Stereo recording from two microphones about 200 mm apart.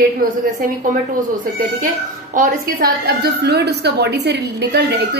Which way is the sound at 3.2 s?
55° right (ahead or behind).